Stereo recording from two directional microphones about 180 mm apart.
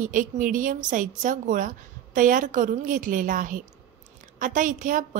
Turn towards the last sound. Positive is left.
turn(degrees=-45)  # may be behind; listen again after turning